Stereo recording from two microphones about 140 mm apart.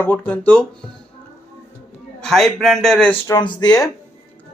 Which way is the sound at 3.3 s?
30° left (ahead or behind).